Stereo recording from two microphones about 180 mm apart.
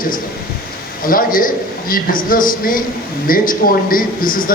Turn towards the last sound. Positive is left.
turn(degrees=50)  # may be behind; listen again after turning